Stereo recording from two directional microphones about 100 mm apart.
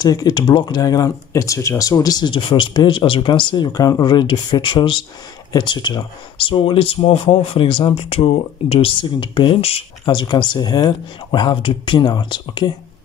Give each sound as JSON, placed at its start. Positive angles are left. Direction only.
{"t": 0.0, "sound": "speech", "side_deg": 40}
{"t": 9.2, "sound": "speech", "side_deg": 55}
{"t": 9.6, "sound": "speech", "side_deg": 80}
{"t": 10.0, "sound": "speech", "side_deg": 45}